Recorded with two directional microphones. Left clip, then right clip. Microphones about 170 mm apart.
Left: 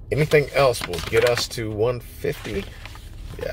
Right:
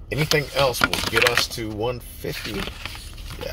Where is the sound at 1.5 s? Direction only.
25° left (ahead or behind).